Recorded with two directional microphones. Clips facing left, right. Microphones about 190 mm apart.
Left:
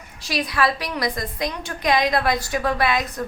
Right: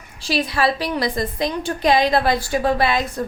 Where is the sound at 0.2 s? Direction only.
30° right (ahead or behind).